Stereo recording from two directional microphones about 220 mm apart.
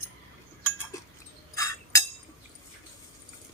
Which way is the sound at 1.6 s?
15° left (ahead or behind).